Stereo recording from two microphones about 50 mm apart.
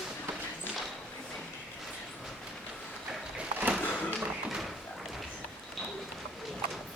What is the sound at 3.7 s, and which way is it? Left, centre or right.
Tap, centre.